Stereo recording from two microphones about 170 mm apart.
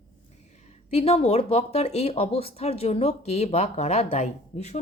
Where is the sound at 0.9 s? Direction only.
35° left (ahead or behind).